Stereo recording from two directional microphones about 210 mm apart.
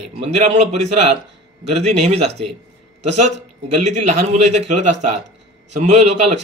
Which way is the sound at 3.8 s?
35° right (ahead or behind).